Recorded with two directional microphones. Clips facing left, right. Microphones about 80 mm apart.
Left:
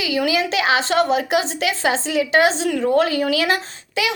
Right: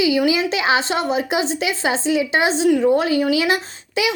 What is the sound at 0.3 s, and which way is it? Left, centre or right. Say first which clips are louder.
A woman's voice: right 1 dB; right.